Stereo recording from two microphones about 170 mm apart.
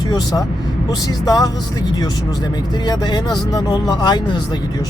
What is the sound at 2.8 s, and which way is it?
Speech, 25° left (ahead or behind).